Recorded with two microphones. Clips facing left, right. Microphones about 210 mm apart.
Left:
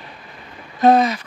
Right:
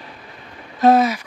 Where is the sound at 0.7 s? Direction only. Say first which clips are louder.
Even; 5° right (ahead or behind).